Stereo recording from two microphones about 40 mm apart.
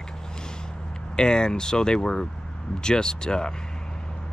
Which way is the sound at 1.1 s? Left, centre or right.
Centre.